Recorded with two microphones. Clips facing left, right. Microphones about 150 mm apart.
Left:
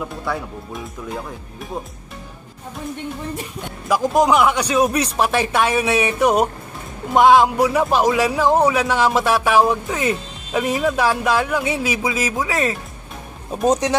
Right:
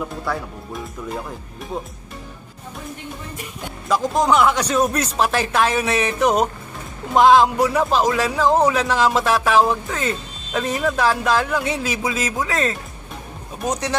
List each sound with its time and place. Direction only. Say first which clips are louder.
0.0 s speech: even; centre (ahead or behind)
3.6 s speech: left 1 dB; 5° left (ahead or behind)